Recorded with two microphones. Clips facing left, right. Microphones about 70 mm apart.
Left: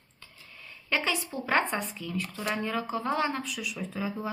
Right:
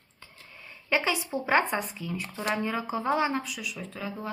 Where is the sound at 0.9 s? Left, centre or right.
Centre.